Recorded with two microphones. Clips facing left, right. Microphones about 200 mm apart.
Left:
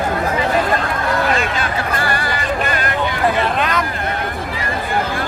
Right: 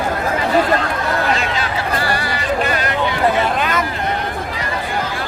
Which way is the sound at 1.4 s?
50° left (ahead or behind).